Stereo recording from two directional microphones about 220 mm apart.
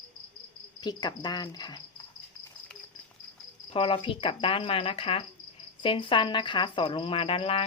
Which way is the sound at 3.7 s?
25° left (ahead or behind).